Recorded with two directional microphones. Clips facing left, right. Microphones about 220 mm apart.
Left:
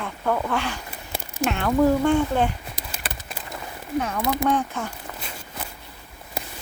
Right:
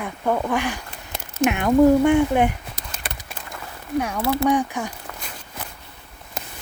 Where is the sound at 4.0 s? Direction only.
10° right (ahead or behind).